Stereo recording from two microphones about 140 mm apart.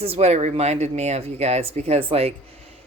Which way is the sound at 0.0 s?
45° right (ahead or behind).